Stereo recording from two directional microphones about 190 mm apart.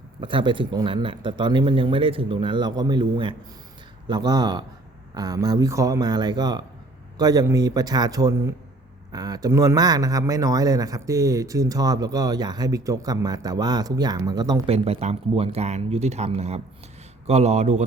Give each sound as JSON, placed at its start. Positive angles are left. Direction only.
{"t": 0.2, "sound": "speech", "side_deg": -25}
{"t": 14.7, "sound": "speech", "side_deg": -30}